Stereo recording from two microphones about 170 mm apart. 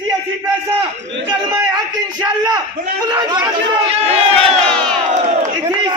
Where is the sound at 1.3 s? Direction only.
25° right (ahead or behind).